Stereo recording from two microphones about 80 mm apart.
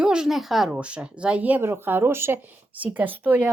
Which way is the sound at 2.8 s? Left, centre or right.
Centre.